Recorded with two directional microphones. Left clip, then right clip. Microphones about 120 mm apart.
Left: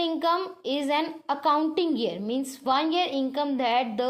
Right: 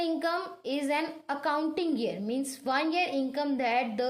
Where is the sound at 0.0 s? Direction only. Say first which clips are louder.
Left 5 dB; 30° left (ahead or behind).